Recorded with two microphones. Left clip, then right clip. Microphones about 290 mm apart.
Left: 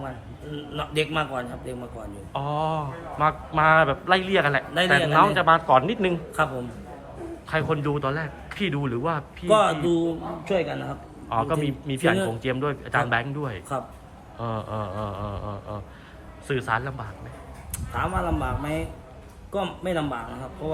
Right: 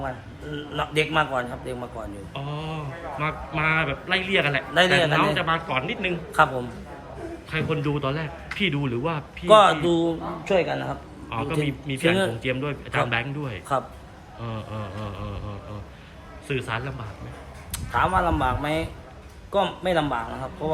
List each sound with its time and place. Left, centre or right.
0.5 s a man's voice: centre
5.9 s a man's voice: left
6.3 s a man's voice: centre
16.5 s a man's voice: centre